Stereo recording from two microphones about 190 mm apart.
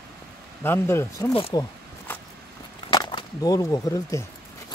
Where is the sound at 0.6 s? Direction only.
10° left (ahead or behind).